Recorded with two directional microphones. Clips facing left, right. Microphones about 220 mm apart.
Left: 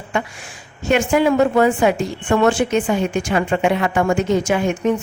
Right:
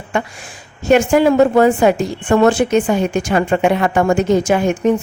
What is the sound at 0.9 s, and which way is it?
Speech, 40° right (ahead or behind).